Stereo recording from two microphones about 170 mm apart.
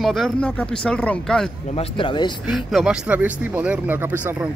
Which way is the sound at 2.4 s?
Centre (ahead or behind).